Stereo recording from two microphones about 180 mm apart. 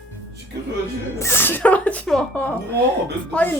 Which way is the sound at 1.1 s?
15° left (ahead or behind).